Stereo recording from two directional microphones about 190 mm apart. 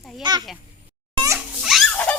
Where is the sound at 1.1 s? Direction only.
20° right (ahead or behind).